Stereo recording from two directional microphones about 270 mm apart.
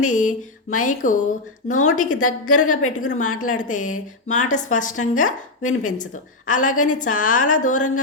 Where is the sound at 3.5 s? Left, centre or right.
Left.